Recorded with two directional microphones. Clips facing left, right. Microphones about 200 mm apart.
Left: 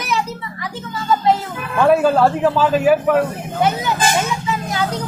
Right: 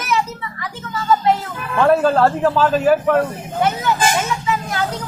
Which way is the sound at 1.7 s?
10° left (ahead or behind).